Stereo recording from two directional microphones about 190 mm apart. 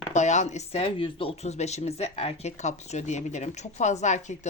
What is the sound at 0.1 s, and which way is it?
Speech, 40° left (ahead or behind).